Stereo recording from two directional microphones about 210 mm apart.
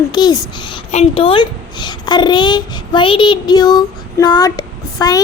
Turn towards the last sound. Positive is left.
turn(degrees=20)  # may be behind; listen again after turning